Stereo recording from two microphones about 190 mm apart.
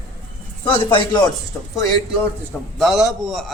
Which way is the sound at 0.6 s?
25° left (ahead or behind).